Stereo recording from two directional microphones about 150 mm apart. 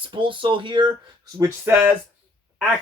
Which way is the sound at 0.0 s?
35° right (ahead or behind).